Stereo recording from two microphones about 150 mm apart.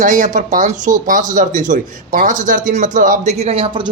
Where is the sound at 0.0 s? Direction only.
60° right (ahead or behind).